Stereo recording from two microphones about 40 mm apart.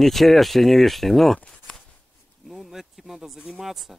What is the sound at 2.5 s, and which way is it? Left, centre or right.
Speech, centre.